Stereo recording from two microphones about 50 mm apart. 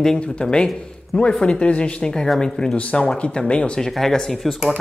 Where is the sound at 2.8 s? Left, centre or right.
Left.